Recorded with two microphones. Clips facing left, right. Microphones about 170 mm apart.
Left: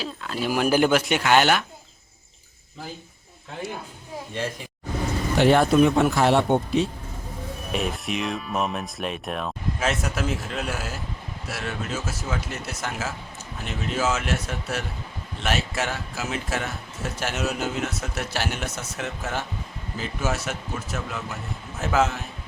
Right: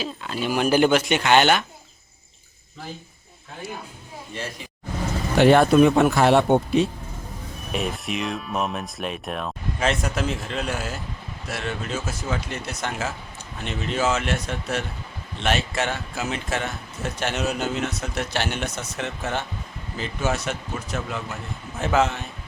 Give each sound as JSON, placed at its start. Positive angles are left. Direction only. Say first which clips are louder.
{"t": 0.0, "sound": "speech", "louder": "right 1 dB", "side_deg": 0}
{"t": 5.4, "sound": "speech", "louder": "right 3 dB", "side_deg": -60}
{"t": 7.7, "sound": "speech", "louder": "even", "side_deg": 0}